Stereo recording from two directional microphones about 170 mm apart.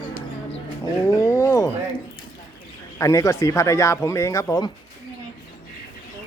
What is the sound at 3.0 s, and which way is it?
Speech, 20° left (ahead or behind).